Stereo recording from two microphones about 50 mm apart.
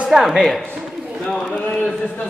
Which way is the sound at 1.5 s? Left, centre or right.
Left.